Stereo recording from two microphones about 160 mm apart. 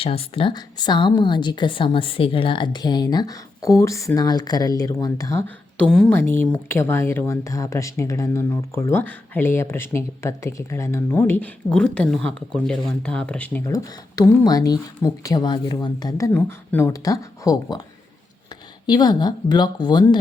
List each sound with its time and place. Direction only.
0.0 s a woman's voice: 35° left (ahead or behind); by 5.5 s 20° left (ahead or behind)
5.7 s speech: 5° left (ahead or behind)
13.7 s a woman's voice: 25° left (ahead or behind)
18.9 s a woman's voice: 25° left (ahead or behind)